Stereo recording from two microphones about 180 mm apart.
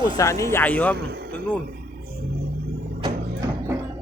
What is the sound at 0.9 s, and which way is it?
Speech, 65° right (ahead or behind).